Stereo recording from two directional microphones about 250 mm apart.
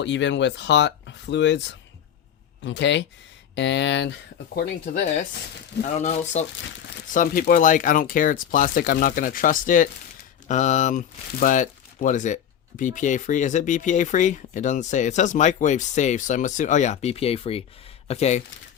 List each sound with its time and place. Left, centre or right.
0.0 s speech: left
4.5 s speech: left